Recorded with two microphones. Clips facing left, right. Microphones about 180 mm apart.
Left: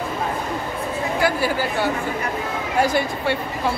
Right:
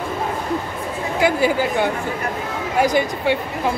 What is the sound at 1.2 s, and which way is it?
Speech, 20° right (ahead or behind).